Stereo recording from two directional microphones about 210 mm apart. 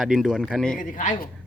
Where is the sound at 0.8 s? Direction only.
40° left (ahead or behind).